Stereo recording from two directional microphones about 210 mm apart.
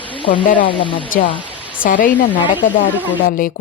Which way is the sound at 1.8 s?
40° left (ahead or behind).